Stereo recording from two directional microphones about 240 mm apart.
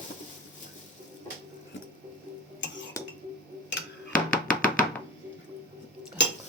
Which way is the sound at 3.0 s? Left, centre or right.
Centre.